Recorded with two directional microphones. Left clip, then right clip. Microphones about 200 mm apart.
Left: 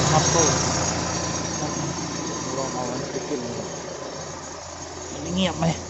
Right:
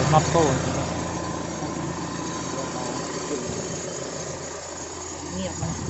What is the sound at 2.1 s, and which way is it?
Vehicle, 20° right (ahead or behind).